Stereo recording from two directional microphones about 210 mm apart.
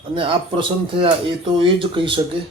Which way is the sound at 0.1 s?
25° right (ahead or behind).